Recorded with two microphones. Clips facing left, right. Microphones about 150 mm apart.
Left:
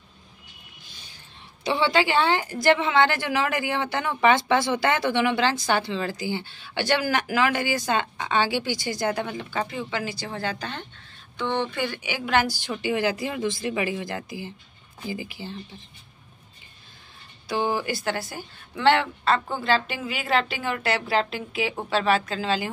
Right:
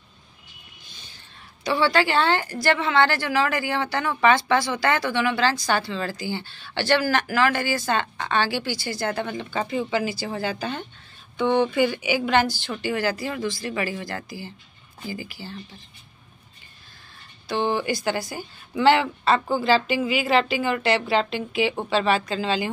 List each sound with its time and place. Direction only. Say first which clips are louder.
1.6 s a woman's voice: right 1 dB; 20° left (ahead or behind); by 12.5 s 5° left (ahead or behind)
12.5 s a woman's voice: left 1 dB; 15° left (ahead or behind)
17.5 s a woman's voice: right 2 dB; 5° left (ahead or behind)